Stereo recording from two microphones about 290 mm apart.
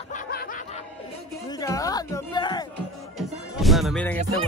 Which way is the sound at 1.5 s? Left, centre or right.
Centre.